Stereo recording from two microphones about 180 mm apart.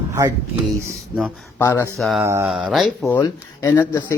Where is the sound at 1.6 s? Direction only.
15° left (ahead or behind).